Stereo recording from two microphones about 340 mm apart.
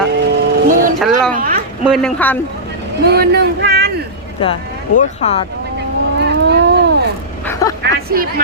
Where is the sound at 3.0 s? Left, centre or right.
Right.